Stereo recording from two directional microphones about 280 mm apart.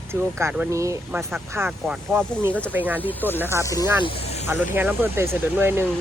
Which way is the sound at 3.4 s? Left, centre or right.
Centre.